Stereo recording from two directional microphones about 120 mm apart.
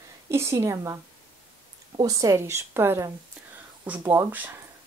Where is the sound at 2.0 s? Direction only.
30° right (ahead or behind).